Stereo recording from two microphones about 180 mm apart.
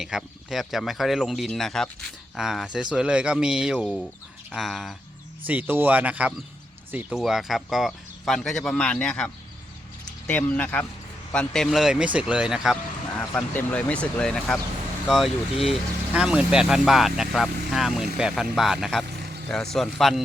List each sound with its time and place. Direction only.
0.0 s speech: centre (ahead or behind)
13.1 s speech: 10° left (ahead or behind)
19.2 s vehicle: 65° right (ahead or behind)
19.7 s speech: centre (ahead or behind)